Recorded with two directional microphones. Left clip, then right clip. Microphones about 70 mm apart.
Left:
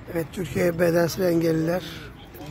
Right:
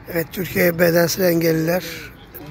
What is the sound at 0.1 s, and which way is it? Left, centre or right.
Speech, right.